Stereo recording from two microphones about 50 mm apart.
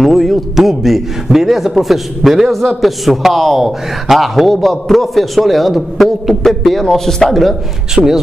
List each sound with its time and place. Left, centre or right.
0.0 s a man's voice: centre
7.9 s speech: centre